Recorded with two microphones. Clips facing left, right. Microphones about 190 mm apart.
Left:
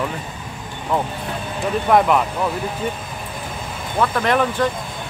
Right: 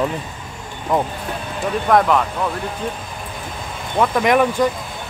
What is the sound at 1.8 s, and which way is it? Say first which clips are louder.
Speech: even; 5° left (ahead or behind).